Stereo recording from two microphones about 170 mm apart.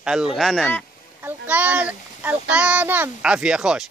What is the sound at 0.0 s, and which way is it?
Speech, 5° right (ahead or behind).